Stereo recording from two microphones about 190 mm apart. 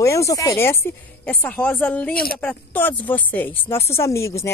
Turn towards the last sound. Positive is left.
turn(degrees=15)  # may be behind; listen again after turning